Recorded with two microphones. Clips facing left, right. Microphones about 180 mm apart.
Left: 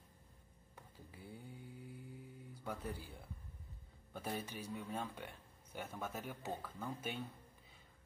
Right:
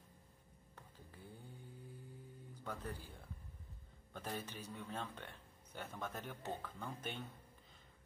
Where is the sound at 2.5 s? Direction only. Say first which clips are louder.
Left 2 dB; 10° left (ahead or behind).